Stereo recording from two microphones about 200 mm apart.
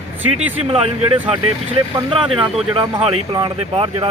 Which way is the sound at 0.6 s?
30° right (ahead or behind).